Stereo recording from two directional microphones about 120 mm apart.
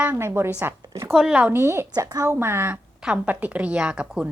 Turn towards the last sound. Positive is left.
turn(degrees=-10)  # may be behind; listen again after turning